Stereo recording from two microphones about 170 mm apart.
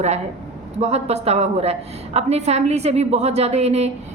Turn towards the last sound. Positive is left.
turn(degrees=-40)  # may be behind; listen again after turning